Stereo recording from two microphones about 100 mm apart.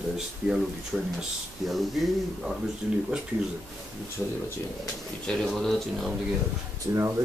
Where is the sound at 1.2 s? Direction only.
Centre (ahead or behind).